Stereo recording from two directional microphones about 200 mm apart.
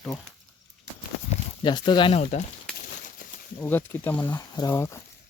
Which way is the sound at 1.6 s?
20° left (ahead or behind).